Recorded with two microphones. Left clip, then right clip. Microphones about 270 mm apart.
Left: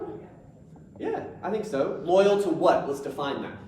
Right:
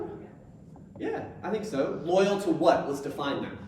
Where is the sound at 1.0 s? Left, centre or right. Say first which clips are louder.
Left 3 dB; centre.